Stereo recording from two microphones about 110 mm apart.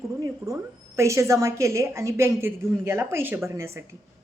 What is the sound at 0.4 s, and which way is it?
A woman's voice, 20° right (ahead or behind).